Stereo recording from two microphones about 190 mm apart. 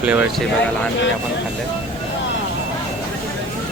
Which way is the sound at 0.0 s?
5° right (ahead or behind).